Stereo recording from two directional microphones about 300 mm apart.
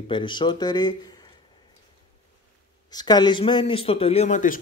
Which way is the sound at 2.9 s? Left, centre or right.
Centre.